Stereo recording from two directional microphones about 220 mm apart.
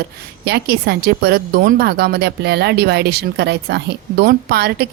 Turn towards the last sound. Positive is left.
turn(degrees=-45)  # may be behind; listen again after turning